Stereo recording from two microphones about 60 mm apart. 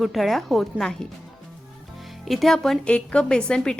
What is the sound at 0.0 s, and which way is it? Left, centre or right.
Speech, centre.